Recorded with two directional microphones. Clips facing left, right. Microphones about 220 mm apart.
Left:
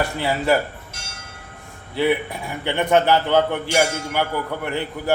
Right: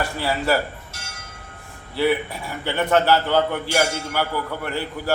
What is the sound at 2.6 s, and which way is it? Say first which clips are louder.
A man's voice: left 1 dB; 20° left (ahead or behind).